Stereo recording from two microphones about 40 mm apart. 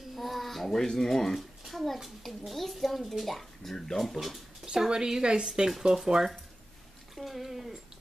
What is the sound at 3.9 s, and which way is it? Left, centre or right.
Speech, centre.